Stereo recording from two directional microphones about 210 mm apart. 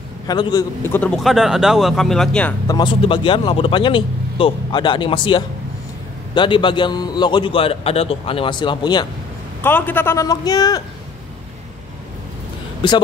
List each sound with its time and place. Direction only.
0.3 s speech: 20° left (ahead or behind)
2.7 s speech: 25° left (ahead or behind)
9.6 s a man's voice: 10° left (ahead or behind)